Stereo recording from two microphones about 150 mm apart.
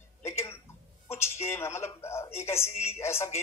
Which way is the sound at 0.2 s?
15° left (ahead or behind).